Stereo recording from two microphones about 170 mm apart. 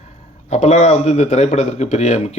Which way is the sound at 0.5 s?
40° left (ahead or behind).